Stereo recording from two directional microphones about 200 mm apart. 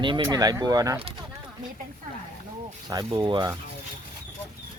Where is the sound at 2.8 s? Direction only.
20° right (ahead or behind).